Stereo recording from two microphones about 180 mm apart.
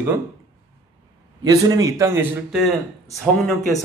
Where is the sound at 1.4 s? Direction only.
20° right (ahead or behind).